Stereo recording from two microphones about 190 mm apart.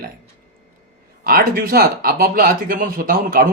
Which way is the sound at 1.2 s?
50° right (ahead or behind).